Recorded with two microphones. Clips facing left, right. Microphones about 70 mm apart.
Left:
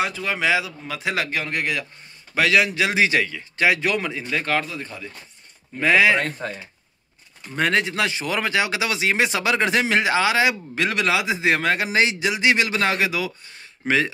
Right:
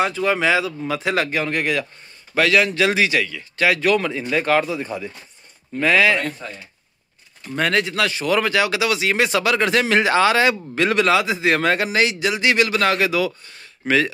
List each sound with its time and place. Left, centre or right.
0.0 s a man's voice: centre
2.3 s speech: centre
3.0 s speech: left
4.2 s speech: centre
5.8 s speech: centre
6.1 s speech: left
7.5 s speech: centre
11.6 s speech: centre
11.9 s speech: left